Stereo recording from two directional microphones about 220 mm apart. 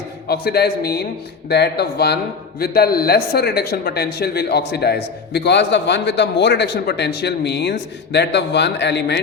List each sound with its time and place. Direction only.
0.3 s a man's voice: 45° left (ahead or behind)